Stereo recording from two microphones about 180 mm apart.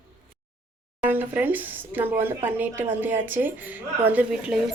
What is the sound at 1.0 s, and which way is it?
A woman's voice, 10° right (ahead or behind).